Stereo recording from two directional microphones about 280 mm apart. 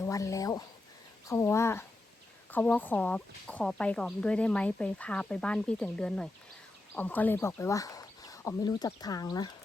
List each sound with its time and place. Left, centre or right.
0.0 s speech: centre